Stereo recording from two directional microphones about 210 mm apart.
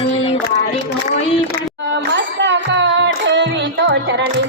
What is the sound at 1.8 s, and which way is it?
Music, 60° right (ahead or behind).